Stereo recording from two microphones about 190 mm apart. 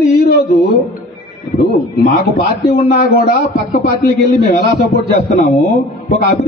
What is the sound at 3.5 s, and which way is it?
Speech, 50° left (ahead or behind).